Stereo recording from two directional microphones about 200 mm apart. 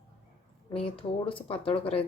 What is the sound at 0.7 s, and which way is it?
Speech, 25° left (ahead or behind).